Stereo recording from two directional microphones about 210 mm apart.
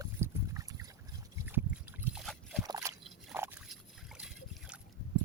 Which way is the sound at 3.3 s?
10° right (ahead or behind).